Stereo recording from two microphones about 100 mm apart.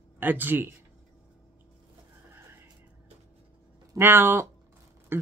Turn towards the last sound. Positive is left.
turn(degrees=-25)  # may be behind; listen again after turning